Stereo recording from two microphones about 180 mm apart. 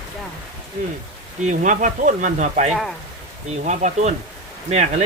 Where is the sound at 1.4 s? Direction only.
45° right (ahead or behind).